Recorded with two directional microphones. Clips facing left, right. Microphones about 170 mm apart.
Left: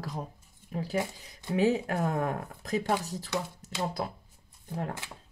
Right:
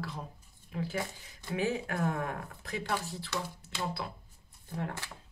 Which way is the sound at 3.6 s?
40° left (ahead or behind).